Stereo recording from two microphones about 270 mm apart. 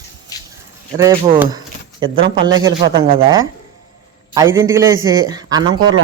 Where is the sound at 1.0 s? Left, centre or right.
Centre.